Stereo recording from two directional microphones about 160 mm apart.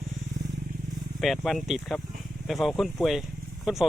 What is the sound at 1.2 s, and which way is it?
Speech, centre (ahead or behind).